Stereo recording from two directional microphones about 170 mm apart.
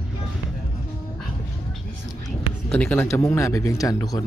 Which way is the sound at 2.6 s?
5° left (ahead or behind).